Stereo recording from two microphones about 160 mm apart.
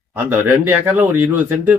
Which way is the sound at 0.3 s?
15° right (ahead or behind).